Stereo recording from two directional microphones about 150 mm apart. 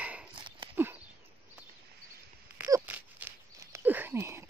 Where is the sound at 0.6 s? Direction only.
30° right (ahead or behind).